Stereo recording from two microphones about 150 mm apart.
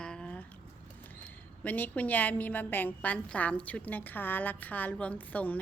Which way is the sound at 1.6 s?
10° left (ahead or behind).